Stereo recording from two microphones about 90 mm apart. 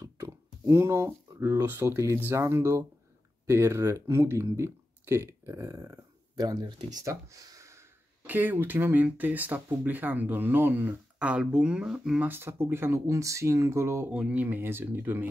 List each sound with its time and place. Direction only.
0.0 s speech: 35° right (ahead or behind)
8.3 s speech: 20° right (ahead or behind)
12.3 s speech: 25° right (ahead or behind)
14.1 s speech: 15° right (ahead or behind)